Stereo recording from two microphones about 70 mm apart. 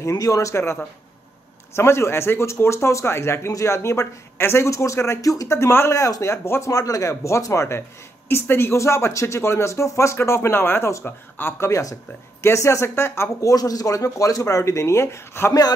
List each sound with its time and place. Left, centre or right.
0.0 s speech: left
1.8 s speech: left
5.9 s speech: left
6.7 s speech: left
8.3 s speech: left
11.1 s speech: left
11.6 s speech: left
12.4 s speech: left
13.5 s speech: left